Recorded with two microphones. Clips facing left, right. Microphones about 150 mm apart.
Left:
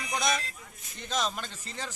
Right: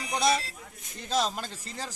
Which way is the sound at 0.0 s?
30° right (ahead or behind).